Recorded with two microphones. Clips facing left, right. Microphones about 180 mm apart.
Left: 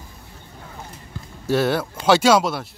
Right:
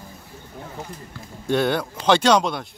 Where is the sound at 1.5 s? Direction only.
5° left (ahead or behind).